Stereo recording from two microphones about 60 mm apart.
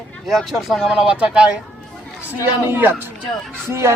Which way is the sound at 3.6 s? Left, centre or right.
Right.